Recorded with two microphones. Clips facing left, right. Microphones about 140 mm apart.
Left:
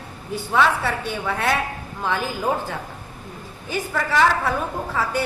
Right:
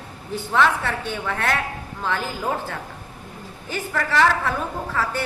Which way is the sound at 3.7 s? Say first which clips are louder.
Left 1 dB; 10° left (ahead or behind).